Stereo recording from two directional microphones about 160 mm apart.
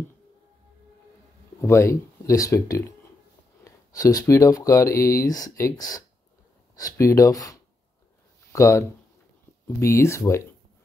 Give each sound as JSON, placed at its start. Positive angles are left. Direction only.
{"t": 1.6, "sound": "speech", "side_deg": 20}